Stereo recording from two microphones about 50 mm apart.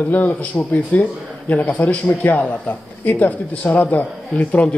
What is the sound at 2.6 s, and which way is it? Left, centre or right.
Speech, left.